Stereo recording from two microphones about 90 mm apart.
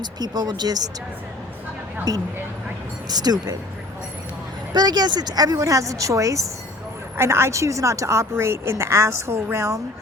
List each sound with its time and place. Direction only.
0.0 s speech: 50° right (ahead or behind)
2.1 s speech: 45° right (ahead or behind)
4.7 s a woman's voice: 50° right (ahead or behind); by 9.8 s 35° right (ahead or behind)